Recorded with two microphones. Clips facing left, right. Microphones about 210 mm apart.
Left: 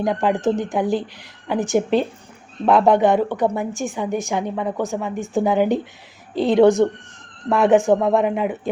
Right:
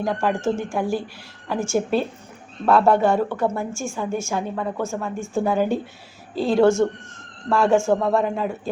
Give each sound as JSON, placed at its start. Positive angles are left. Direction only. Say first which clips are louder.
{"t": 0.0, "sound": "a woman's voice", "louder": "left 3 dB", "side_deg": 20}